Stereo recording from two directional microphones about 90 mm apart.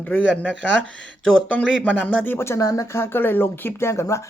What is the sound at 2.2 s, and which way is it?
Speech, 30° left (ahead or behind).